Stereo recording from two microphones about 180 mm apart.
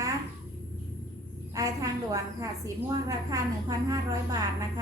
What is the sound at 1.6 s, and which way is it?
A woman's voice, 20° right (ahead or behind).